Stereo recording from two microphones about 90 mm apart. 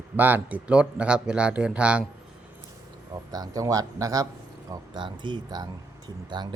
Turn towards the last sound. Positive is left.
turn(degrees=-55)  # may be behind; listen again after turning